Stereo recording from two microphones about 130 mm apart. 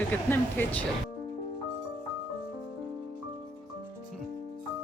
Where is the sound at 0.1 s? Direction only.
15° left (ahead or behind).